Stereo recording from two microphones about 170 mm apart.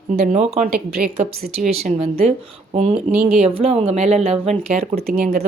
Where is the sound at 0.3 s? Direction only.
40° right (ahead or behind).